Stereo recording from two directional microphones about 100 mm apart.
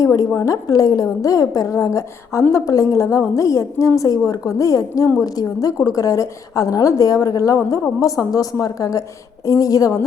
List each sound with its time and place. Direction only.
0.0 s a woman's voice: 35° left (ahead or behind)